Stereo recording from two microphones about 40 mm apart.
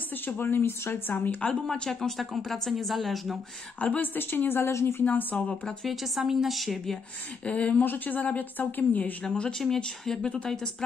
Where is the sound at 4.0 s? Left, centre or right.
Left.